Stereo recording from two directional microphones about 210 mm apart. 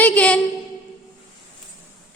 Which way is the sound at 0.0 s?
5° left (ahead or behind).